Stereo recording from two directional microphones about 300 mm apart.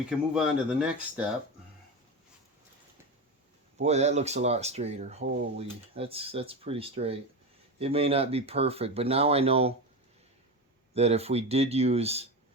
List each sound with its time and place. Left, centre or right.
0.3 s speech: centre
3.8 s speech: right
10.9 s speech: right